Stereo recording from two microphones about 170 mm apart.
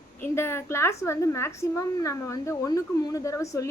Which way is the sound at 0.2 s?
15° left (ahead or behind).